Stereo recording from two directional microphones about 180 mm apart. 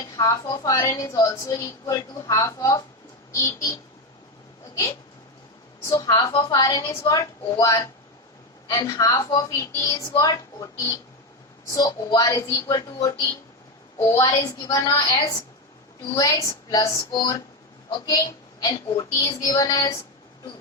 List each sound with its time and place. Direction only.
0.0 s a woman's voice: 20° left (ahead or behind)
5.8 s a woman's voice: 15° left (ahead or behind)